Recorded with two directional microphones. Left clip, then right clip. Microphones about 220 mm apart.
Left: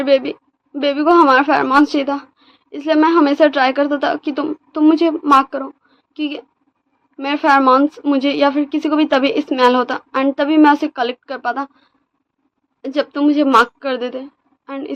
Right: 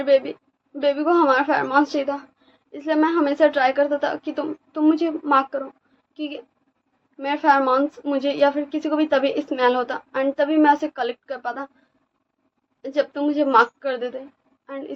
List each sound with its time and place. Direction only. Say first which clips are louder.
0.0 s a woman's voice: left 4 dB; 50° left (ahead or behind)
12.8 s a woman's voice: left 5 dB; 45° left (ahead or behind)